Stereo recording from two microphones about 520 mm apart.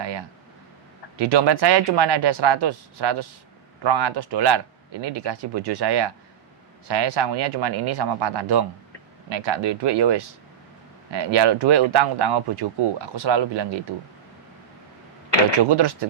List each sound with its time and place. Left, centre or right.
0.0 s a sound: right
1.2 s speech: right
15.6 s speech: right